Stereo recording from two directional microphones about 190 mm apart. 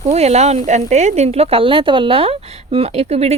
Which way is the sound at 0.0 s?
35° right (ahead or behind).